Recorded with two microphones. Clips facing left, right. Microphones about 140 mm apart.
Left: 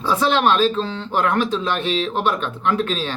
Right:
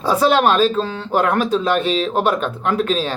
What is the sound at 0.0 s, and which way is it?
Speech, 45° right (ahead or behind).